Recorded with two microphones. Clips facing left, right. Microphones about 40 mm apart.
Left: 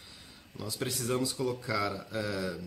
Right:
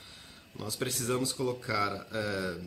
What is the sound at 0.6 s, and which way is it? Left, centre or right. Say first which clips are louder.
Speech: even; centre.